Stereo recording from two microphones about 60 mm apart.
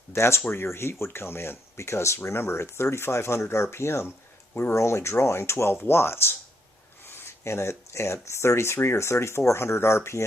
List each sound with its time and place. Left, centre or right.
0.1 s speech: left